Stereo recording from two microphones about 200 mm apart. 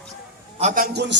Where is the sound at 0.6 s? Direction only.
40° right (ahead or behind); by 1.2 s 55° right (ahead or behind).